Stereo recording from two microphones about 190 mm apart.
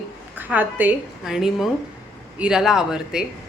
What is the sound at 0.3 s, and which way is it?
Speech, 10° right (ahead or behind).